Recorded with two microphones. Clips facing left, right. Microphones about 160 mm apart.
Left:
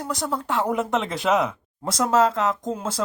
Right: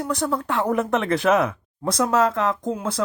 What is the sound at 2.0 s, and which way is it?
Speech, 25° left (ahead or behind).